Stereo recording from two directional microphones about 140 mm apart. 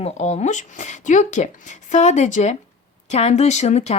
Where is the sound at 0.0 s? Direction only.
50° left (ahead or behind).